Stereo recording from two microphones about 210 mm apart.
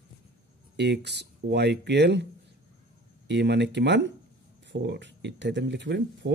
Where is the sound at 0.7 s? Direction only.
55° right (ahead or behind).